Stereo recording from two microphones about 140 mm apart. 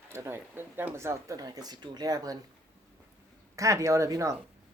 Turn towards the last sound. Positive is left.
turn(degrees=-20)  # may be behind; listen again after turning